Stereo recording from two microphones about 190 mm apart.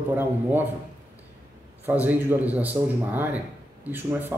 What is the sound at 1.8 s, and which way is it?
A man's voice, 10° right (ahead or behind).